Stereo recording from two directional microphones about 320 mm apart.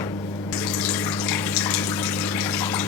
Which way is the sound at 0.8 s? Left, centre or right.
Centre.